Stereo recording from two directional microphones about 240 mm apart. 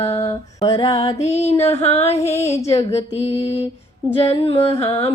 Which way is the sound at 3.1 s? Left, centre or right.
Left.